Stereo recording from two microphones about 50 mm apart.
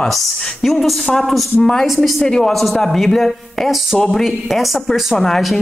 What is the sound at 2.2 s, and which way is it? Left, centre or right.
A woman's voice, centre.